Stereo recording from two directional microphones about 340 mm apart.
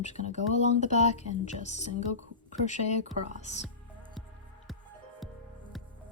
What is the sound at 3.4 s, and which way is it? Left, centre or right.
Speech, centre.